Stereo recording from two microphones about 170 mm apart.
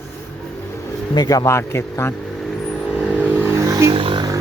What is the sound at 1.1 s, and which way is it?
Speech, 25° left (ahead or behind).